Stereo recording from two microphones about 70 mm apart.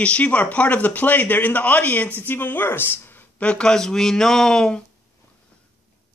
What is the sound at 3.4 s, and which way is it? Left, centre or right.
Speech, centre.